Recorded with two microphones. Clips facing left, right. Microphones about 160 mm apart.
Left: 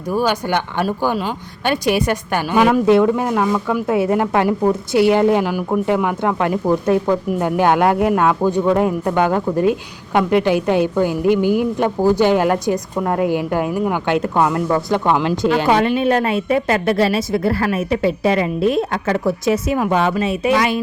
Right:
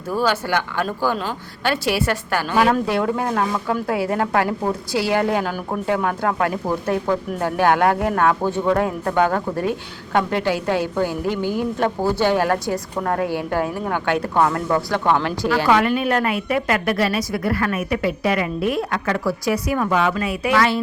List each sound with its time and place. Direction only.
0.1 s a woman's voice: 15° left (ahead or behind)
3.8 s a woman's voice: 20° left (ahead or behind)